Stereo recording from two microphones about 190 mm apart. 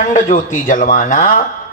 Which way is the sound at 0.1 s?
45° left (ahead or behind).